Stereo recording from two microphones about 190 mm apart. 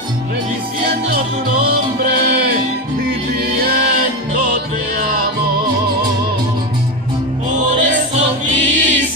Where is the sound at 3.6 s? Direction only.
55° right (ahead or behind).